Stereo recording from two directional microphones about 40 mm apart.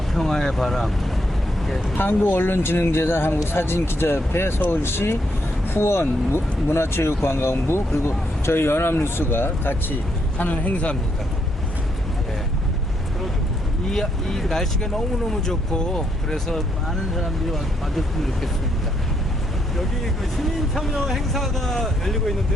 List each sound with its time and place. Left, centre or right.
0.1 s speech: centre
2.0 s speech: left
10.3 s a man's voice: left
13.9 s speech: centre
17.2 s speech: centre
20.3 s speech: centre